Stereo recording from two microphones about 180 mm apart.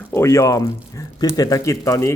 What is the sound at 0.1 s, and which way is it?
Speech, 15° left (ahead or behind).